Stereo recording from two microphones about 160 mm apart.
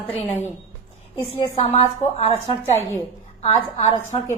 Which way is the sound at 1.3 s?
35° left (ahead or behind).